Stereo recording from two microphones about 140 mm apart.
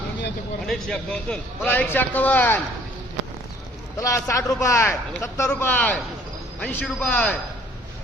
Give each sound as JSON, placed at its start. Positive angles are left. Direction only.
{"t": 0.7, "sound": "a man's voice", "side_deg": 5}
{"t": 4.0, "sound": "a man's voice", "side_deg": 20}